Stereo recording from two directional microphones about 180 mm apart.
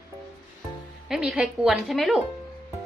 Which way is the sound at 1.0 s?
Centre (ahead or behind).